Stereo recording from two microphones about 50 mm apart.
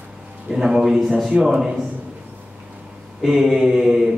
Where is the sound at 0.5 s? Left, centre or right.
Centre.